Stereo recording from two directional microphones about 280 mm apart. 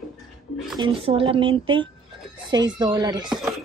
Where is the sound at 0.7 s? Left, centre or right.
Centre.